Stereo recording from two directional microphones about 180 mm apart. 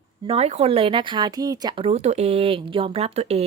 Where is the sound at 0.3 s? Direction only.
35° right (ahead or behind).